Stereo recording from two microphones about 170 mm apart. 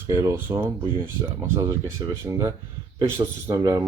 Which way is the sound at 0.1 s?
15° right (ahead or behind).